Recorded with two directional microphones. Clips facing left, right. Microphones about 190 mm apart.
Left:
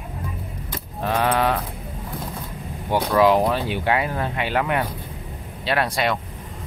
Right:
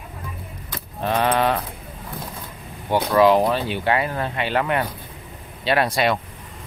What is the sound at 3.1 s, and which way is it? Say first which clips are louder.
Speech: right 1 dB; centre (ahead or behind).